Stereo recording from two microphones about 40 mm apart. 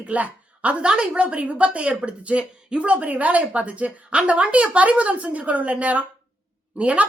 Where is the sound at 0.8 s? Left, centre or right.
Right.